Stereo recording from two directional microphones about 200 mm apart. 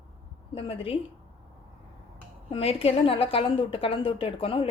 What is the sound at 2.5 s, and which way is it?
A woman's voice, 30° left (ahead or behind).